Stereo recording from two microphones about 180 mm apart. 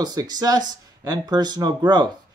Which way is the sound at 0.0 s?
20° right (ahead or behind).